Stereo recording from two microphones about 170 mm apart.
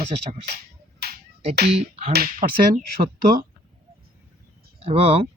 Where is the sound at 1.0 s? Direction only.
75° right (ahead or behind).